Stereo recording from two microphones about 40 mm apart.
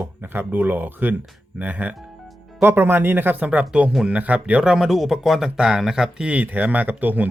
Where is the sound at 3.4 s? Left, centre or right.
Right.